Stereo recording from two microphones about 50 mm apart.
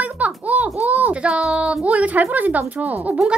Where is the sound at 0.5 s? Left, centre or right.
Right.